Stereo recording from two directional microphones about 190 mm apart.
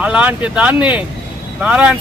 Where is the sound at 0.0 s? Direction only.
5° right (ahead or behind).